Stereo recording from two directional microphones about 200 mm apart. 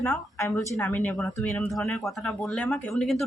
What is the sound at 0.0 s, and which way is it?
Speech, 10° left (ahead or behind).